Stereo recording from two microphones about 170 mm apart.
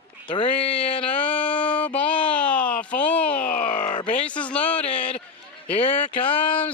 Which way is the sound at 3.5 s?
50° left (ahead or behind).